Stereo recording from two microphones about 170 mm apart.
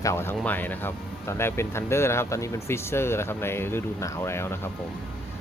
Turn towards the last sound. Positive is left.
turn(degrees=15)  # may be behind; listen again after turning